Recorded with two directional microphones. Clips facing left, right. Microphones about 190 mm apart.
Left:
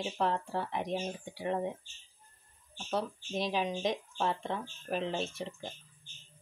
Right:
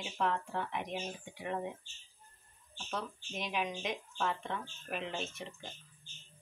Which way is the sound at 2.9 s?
35° left (ahead or behind).